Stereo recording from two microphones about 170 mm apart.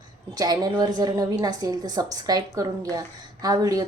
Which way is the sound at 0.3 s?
20° right (ahead or behind).